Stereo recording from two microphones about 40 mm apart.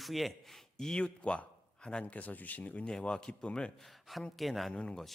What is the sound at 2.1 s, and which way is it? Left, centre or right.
Speech, left.